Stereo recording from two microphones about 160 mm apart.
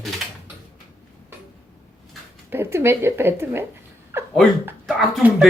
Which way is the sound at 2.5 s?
15° right (ahead or behind).